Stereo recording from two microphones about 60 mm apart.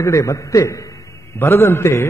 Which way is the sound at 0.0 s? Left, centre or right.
Left.